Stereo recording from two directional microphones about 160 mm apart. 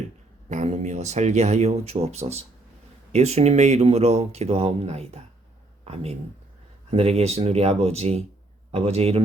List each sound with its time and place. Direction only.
0.4 s speech: 45° right (ahead or behind)